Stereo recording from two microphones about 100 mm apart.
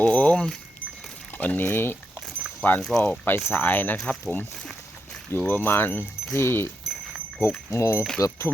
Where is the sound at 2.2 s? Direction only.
5° right (ahead or behind).